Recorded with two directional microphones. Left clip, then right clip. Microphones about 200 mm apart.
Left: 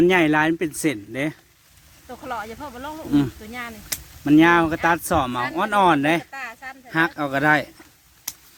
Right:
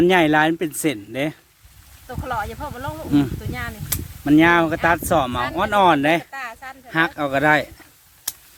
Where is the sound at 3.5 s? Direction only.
10° right (ahead or behind).